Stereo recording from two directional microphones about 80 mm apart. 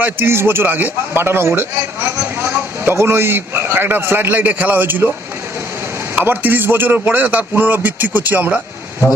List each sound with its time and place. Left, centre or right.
0.0 s a man's voice: right
6.1 s a man's voice: right